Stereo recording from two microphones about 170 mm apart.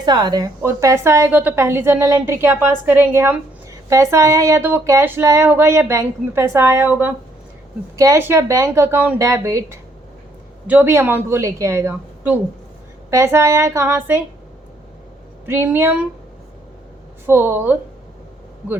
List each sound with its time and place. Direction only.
0.0 s speech: 25° right (ahead or behind)
15.4 s speech: 15° right (ahead or behind)
17.2 s speech: 10° right (ahead or behind)